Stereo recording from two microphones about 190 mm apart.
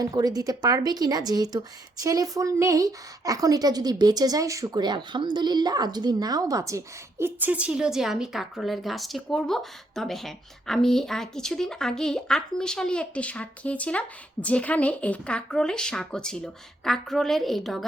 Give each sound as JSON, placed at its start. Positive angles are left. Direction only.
{"t": 0.0, "sound": "a woman's voice", "side_deg": -20}